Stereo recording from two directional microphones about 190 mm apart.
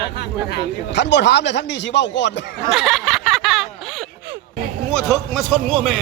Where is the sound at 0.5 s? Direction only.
65° left (ahead or behind).